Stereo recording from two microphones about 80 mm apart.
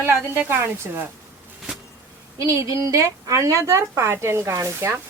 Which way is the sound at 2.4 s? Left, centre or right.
Right.